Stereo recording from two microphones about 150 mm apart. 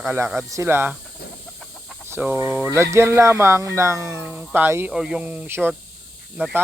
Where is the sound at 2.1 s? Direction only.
15° right (ahead or behind).